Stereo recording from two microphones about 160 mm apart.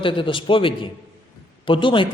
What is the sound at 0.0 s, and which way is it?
A man's voice, 30° left (ahead or behind).